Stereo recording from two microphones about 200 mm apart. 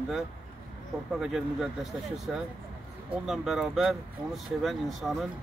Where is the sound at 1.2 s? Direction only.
Centre (ahead or behind).